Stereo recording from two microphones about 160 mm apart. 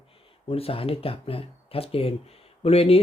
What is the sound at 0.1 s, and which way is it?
Speech, 35° left (ahead or behind).